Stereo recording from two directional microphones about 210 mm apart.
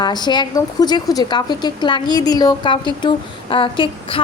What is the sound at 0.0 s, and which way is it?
A woman's voice, 20° left (ahead or behind).